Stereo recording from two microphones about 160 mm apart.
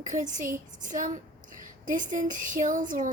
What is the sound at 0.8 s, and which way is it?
A woman's voice, 55° right (ahead or behind).